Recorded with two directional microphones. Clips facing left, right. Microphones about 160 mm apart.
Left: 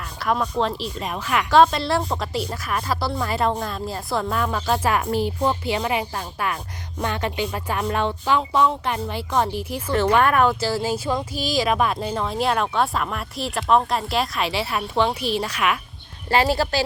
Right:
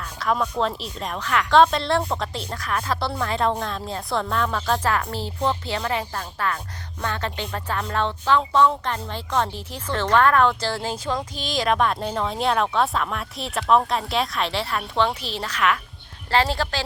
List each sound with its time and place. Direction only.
0.2 s a woman's voice: centre (ahead or behind)